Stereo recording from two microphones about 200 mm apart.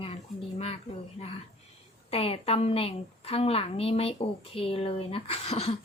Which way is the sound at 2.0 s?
30° left (ahead or behind).